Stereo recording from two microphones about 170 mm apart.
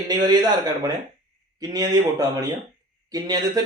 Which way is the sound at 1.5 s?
20° right (ahead or behind).